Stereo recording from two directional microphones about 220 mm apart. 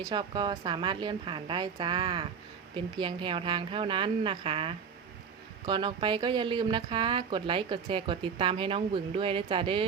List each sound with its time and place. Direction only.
0.1 s speech: 20° right (ahead or behind)